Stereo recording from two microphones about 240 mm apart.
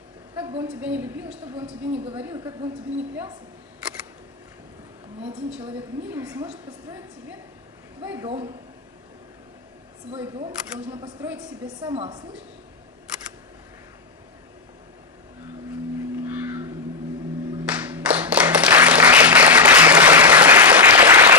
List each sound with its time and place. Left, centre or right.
0.7 s speech: centre
6.0 s speech: centre
8.0 s speech: centre
10.1 s speech: centre
16.3 s a sound: centre
17.6 s applause: centre